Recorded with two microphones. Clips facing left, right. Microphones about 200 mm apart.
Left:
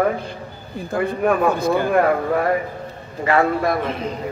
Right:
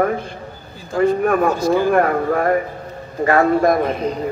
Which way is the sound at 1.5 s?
55° left (ahead or behind).